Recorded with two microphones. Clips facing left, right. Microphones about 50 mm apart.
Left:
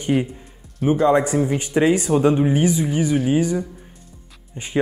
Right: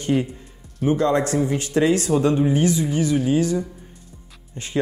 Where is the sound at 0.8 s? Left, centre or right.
Centre.